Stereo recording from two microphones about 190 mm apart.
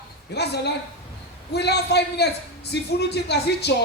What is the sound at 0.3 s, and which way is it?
A man's voice, 60° left (ahead or behind).